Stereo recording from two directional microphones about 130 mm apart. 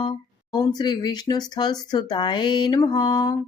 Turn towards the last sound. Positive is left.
turn(degrees=30)  # may be behind; listen again after turning